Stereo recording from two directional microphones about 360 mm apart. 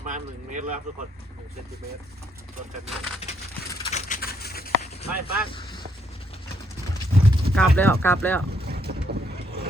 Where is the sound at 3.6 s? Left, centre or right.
Centre.